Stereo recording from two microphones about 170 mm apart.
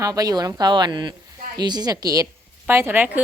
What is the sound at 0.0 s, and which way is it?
A woman's voice, 20° right (ahead or behind).